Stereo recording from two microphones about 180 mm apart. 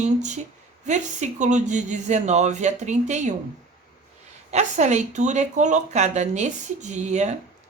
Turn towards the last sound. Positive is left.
turn(degrees=-40)  # may be behind; listen again after turning